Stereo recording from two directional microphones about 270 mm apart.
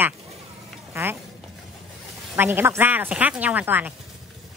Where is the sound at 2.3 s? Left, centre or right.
Centre.